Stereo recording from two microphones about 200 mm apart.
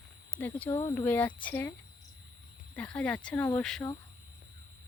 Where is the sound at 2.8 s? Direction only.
5° left (ahead or behind).